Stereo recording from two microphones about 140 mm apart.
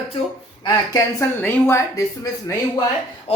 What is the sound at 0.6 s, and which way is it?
Speech, 20° left (ahead or behind).